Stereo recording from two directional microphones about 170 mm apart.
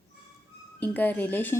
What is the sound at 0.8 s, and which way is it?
Speech, 10° left (ahead or behind).